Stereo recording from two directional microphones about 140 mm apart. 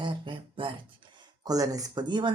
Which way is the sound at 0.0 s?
35° right (ahead or behind).